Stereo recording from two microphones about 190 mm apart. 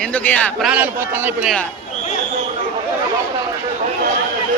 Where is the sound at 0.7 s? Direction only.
10° right (ahead or behind).